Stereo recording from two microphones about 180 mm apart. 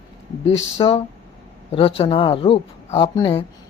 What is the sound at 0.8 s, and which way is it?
Speech, 35° left (ahead or behind).